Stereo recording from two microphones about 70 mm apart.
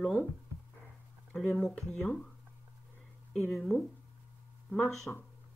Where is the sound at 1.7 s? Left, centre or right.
Centre.